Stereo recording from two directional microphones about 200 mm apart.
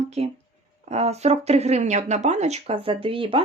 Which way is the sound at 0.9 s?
30° right (ahead or behind).